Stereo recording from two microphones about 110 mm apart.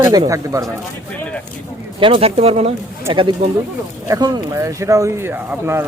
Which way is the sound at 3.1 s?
50° right (ahead or behind).